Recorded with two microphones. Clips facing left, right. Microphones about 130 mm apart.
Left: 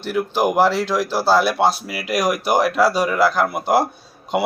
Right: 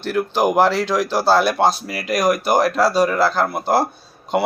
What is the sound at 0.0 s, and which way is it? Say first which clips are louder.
Speech: right 1 dB; 10° left (ahead or behind).